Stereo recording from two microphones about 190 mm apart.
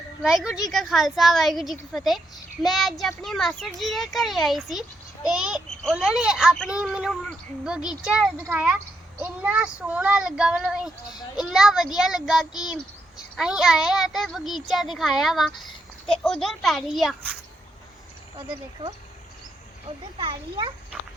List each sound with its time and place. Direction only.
0.2 s a child's voice: 5° right (ahead or behind)
18.3 s a child's voice: 25° right (ahead or behind)
20.1 s a child's voice: 25° right (ahead or behind)